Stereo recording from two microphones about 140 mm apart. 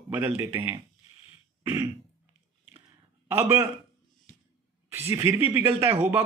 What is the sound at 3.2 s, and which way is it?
Speech, 20° right (ahead or behind).